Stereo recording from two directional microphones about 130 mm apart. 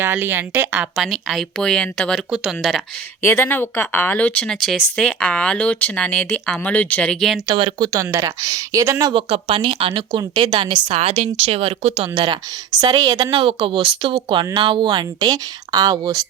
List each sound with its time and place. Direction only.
0.0 s speech: 20° right (ahead or behind); by 2.8 s centre (ahead or behind)
3.2 s speech: 20° left (ahead or behind); by 7.4 s centre (ahead or behind)
7.5 s a woman's voice: 40° right (ahead or behind)
7.9 s speech: 25° right (ahead or behind)
9.1 s a woman's voice: 45° right (ahead or behind)